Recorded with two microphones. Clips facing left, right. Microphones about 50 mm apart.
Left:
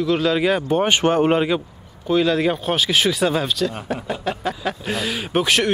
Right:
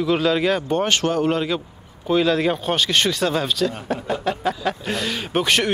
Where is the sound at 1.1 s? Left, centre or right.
Left.